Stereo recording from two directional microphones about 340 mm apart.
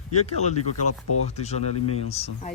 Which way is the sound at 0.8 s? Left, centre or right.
Left.